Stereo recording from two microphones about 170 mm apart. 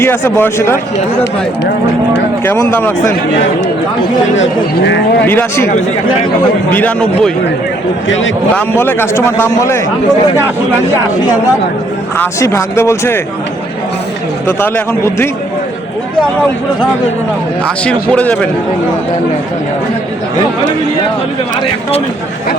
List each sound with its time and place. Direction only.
0.0 s speech: 15° left (ahead or behind)
2.4 s speech: 15° left (ahead or behind)
5.2 s speech: 10° left (ahead or behind)
6.7 s speech: 10° left (ahead or behind)
8.0 s speech: 90° left
8.5 s speech: 15° left (ahead or behind)
12.1 s speech: 15° left (ahead or behind)
14.4 s speech: 15° left (ahead or behind)
17.8 s speech: 5° left (ahead or behind)